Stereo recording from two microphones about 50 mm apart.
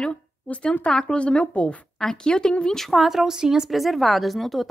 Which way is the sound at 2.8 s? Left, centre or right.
Centre.